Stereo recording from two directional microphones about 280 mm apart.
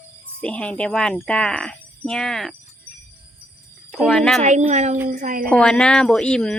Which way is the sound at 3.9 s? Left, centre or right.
Centre.